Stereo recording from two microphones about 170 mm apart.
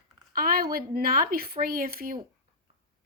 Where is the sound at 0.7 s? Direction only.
60° right (ahead or behind).